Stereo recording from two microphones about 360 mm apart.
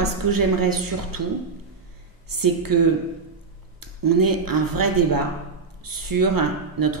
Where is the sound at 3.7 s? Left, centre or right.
Right.